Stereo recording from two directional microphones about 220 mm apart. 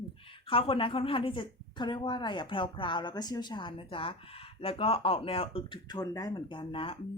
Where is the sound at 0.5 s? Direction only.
25° left (ahead or behind).